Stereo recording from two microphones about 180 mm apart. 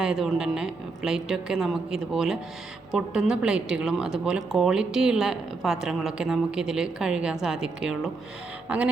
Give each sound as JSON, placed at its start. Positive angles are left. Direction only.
{"t": 0.0, "sound": "a woman's voice", "side_deg": -5}